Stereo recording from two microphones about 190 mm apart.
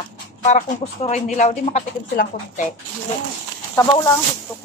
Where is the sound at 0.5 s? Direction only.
40° left (ahead or behind).